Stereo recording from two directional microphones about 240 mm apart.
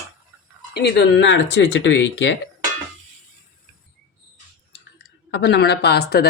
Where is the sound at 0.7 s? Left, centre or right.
Left.